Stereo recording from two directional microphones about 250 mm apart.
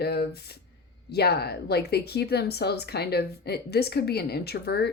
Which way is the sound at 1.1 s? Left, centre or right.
Left.